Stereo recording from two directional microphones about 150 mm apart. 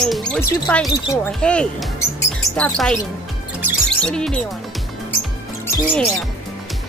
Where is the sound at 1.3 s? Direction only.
5° left (ahead or behind).